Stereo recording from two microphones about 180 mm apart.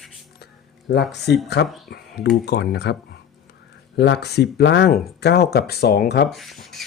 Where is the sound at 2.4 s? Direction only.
70° left (ahead or behind).